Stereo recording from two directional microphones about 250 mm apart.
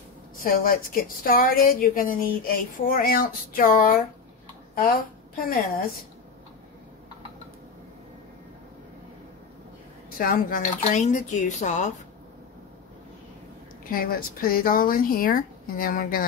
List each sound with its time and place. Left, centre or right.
0.4 s a woman's voice: left
10.1 s speech: left
13.8 s a woman's voice: left